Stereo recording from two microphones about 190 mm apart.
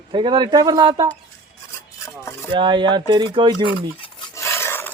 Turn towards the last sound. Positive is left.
turn(degrees=10)  # may be behind; listen again after turning